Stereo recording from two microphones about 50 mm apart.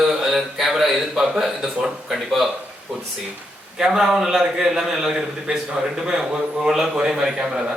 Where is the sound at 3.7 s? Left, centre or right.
Centre.